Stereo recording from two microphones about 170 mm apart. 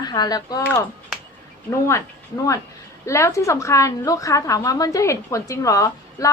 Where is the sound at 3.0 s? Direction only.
15° left (ahead or behind).